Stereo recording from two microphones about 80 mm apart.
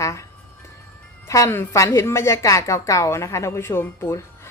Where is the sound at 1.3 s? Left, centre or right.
Left.